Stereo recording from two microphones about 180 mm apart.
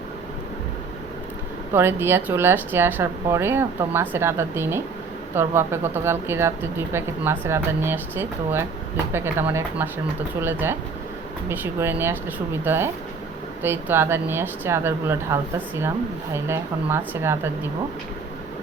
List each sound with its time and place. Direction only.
1.7 s speech: 15° right (ahead or behind)